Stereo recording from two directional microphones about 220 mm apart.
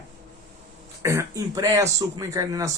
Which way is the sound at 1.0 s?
15° right (ahead or behind).